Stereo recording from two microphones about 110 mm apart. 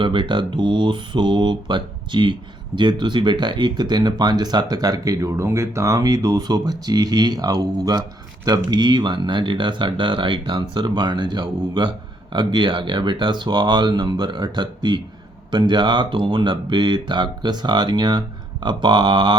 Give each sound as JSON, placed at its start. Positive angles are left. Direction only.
{"t": 0.0, "sound": "speech", "side_deg": -45}